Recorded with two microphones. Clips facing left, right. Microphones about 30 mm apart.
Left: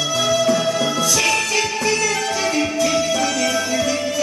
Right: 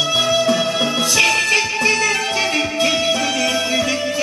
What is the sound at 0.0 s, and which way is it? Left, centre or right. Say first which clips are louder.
Music: right 2 dB; right.